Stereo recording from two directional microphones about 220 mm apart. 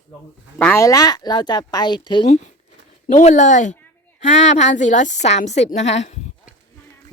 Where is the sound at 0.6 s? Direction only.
10° left (ahead or behind); by 6.1 s 30° left (ahead or behind).